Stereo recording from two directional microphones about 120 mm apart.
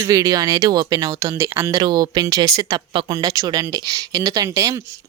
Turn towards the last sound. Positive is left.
turn(degrees=-30)  # may be behind; listen again after turning